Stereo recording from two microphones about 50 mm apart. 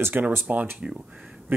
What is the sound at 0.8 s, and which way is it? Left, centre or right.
Speech, right.